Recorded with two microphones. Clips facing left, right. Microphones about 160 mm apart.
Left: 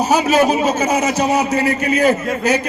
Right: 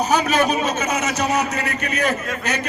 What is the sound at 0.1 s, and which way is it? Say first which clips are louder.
A man's voice: left 6 dB; 30° left (ahead or behind).